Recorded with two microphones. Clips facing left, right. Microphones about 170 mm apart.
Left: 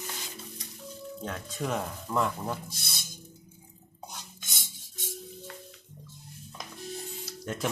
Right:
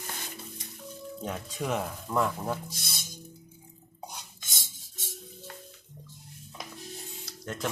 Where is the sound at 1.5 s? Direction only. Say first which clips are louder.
Even; 5° right (ahead or behind).